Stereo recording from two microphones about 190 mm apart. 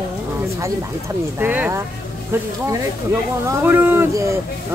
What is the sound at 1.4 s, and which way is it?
Speech, 10° right (ahead or behind).